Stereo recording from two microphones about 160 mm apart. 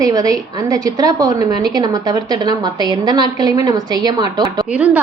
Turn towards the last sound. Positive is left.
turn(degrees=-10)  # may be behind; listen again after turning